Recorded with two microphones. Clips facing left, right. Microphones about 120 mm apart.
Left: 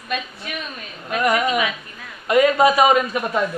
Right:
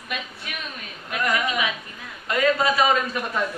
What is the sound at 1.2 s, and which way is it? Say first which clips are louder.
Speech: left 5 dB; 20° left (ahead or behind).